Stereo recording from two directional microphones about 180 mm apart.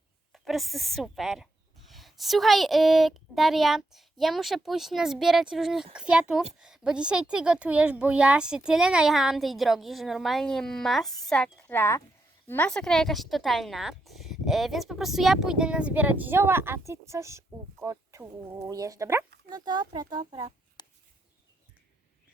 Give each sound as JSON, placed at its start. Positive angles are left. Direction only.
{"t": 0.3, "sound": "speech", "side_deg": 0}
{"t": 11.8, "sound": "speech", "side_deg": 15}
{"t": 20.8, "sound": "a sound", "side_deg": 25}